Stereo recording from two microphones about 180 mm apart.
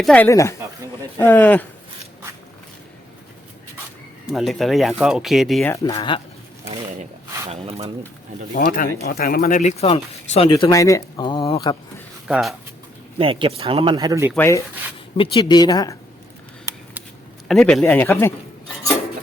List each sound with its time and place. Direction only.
0.0 s speech: 5° left (ahead or behind)
0.3 s speech: 15° left (ahead or behind)
4.3 s speech: centre (ahead or behind)
5.6 s speech: 20° left (ahead or behind)
7.5 s speech: 35° right (ahead or behind)
8.5 s speech: 50° left (ahead or behind); by 11.8 s 25° left (ahead or behind)
12.3 s speech: centre (ahead or behind)
13.1 s speech: 30° right (ahead or behind)
14.3 s speech: 15° left (ahead or behind)
15.2 s speech: 25° left (ahead or behind)
17.5 s speech: centre (ahead or behind)